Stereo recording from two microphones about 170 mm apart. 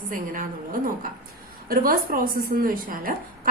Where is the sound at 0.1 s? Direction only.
50° right (ahead or behind).